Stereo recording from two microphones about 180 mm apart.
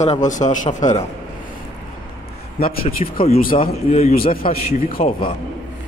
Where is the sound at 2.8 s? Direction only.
35° left (ahead or behind).